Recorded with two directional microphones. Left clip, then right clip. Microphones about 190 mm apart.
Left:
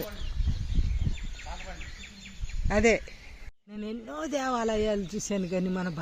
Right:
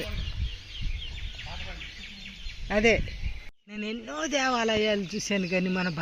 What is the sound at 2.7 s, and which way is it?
Speech, 10° left (ahead or behind).